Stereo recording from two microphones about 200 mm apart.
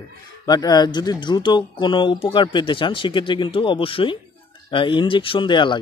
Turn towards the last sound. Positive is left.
turn(degrees=25)  # may be behind; listen again after turning